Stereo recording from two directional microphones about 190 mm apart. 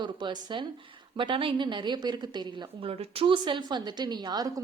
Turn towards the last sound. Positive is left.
turn(degrees=-20)  # may be behind; listen again after turning